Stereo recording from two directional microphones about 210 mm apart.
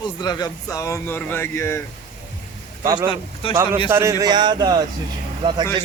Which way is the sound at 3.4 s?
25° left (ahead or behind).